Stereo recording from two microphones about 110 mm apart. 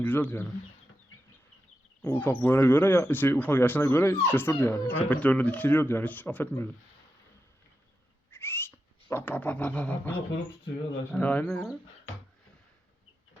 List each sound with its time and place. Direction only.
0.0 s speech: 15° left (ahead or behind)
2.0 s speech: 20° left (ahead or behind)
8.3 s a sound: 20° left (ahead or behind)
11.1 s speech: 15° left (ahead or behind)